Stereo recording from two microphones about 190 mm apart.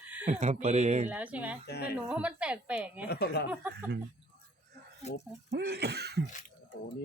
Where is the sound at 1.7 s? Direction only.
55° left (ahead or behind).